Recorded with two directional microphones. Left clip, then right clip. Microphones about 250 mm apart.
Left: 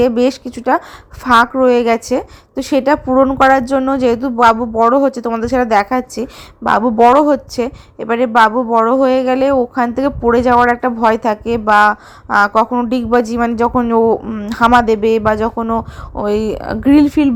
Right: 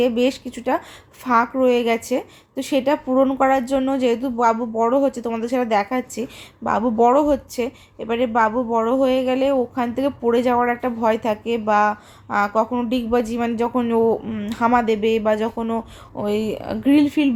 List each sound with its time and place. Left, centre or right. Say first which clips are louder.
0.0 s a woman's voice: left 6 dB; centre